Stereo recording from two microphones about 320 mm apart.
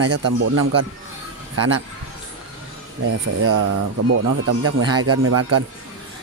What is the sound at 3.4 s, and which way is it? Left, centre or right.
Speech, right.